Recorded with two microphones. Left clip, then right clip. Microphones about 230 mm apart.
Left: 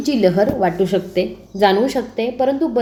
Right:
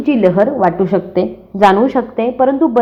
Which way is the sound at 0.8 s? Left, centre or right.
Centre.